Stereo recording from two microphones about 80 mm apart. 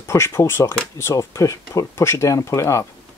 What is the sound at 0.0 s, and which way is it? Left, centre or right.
Speech, left.